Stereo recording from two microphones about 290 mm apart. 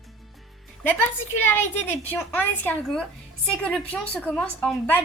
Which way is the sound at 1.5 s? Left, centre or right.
Centre.